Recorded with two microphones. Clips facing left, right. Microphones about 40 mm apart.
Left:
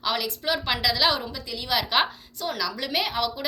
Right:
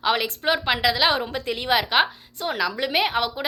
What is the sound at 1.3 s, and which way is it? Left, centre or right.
Speech, right.